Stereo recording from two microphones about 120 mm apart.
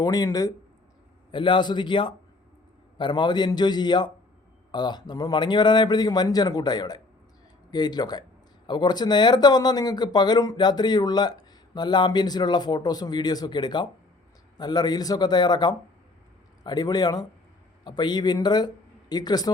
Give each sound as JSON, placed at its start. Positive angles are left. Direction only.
{"t": 0.0, "sound": "speech", "side_deg": 30}
{"t": 1.3, "sound": "speech", "side_deg": 40}